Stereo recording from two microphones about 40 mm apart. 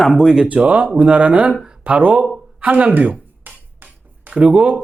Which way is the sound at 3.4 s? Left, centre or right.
Right.